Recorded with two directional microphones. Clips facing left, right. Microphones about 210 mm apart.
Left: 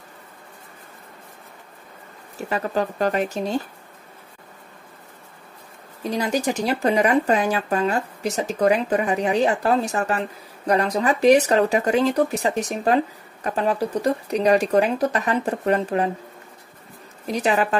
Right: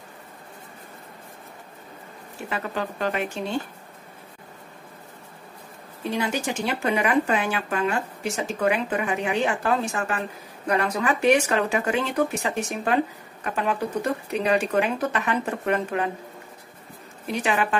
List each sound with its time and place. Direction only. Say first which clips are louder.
2.3 s speech: left 6 dB; 40° left (ahead or behind)
6.0 s speech: left 4 dB; 40° left (ahead or behind)
17.3 s speech: left 3 dB; 40° left (ahead or behind)